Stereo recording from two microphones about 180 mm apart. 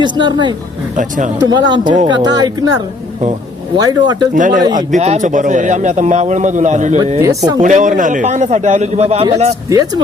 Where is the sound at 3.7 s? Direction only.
25° right (ahead or behind).